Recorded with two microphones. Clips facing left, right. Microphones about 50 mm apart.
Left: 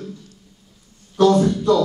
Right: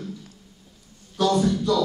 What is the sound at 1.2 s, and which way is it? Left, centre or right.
Speech, left.